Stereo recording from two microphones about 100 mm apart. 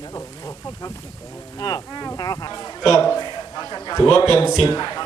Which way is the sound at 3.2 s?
45° left (ahead or behind).